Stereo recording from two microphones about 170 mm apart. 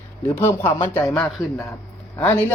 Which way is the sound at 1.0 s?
5° left (ahead or behind).